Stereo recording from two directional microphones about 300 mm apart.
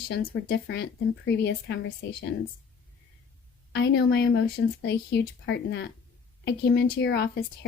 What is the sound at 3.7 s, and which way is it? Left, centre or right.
A woman's voice, left.